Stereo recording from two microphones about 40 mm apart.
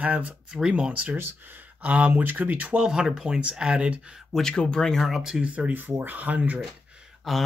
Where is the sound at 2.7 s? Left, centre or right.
Centre.